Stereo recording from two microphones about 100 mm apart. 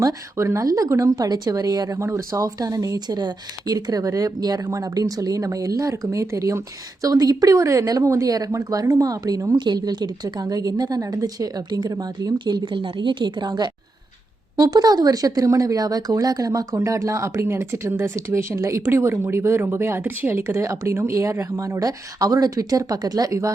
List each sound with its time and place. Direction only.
0.0 s speech: 30° right (ahead or behind)